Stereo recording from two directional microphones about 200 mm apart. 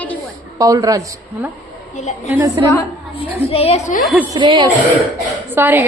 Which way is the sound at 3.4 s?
30° left (ahead or behind).